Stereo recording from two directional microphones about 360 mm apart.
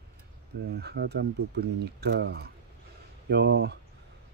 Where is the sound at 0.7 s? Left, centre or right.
Right.